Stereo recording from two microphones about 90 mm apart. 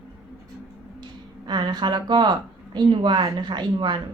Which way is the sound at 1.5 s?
55° right (ahead or behind).